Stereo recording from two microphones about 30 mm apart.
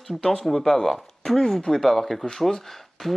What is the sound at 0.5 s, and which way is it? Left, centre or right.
Speech, centre.